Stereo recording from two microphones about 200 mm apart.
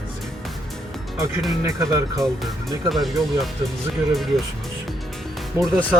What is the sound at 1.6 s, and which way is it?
Speech, 15° right (ahead or behind).